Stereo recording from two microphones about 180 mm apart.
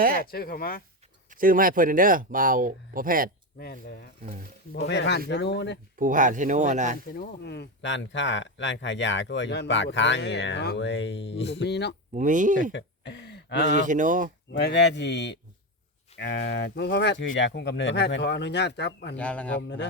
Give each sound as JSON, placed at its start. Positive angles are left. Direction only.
{"t": 0.3, "sound": "speech", "side_deg": 55}
{"t": 1.3, "sound": "speech", "side_deg": -50}
{"t": 3.6, "sound": "speech", "side_deg": 60}
{"t": 4.2, "sound": "speech", "side_deg": -50}
{"t": 4.9, "sound": "speech", "side_deg": 70}
{"t": 6.0, "sound": "speech", "side_deg": -45}
{"t": 7.1, "sound": "speech", "side_deg": 65}
{"t": 12.1, "sound": "speech", "side_deg": -45}
{"t": 12.7, "sound": "a sound", "side_deg": 70}
{"t": 13.7, "sound": "speech", "side_deg": -45}
{"t": 14.5, "sound": "speech", "side_deg": 70}
{"t": 19.1, "sound": "speech", "side_deg": 5}
{"t": 19.6, "sound": "speech", "side_deg": 75}